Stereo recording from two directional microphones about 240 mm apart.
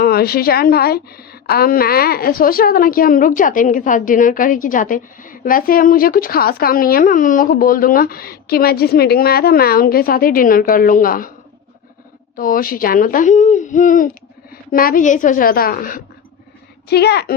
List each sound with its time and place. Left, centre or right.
0.0 s a woman's voice: left
12.4 s a woman's voice: left